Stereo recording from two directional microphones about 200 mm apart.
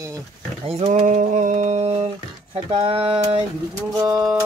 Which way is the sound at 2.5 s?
30° right (ahead or behind).